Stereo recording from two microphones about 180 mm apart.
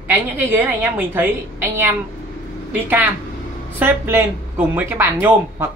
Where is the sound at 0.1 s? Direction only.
10° right (ahead or behind).